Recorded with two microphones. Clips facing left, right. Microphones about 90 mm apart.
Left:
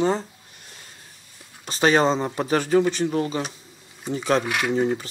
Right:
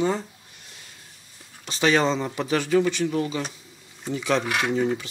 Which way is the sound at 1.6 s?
40° left (ahead or behind).